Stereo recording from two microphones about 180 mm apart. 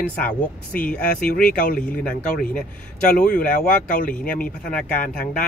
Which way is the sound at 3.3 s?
50° left (ahead or behind).